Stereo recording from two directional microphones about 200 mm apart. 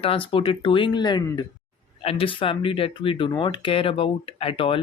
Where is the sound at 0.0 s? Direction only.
25° left (ahead or behind).